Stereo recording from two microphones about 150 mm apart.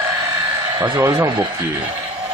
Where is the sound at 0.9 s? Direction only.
20° right (ahead or behind).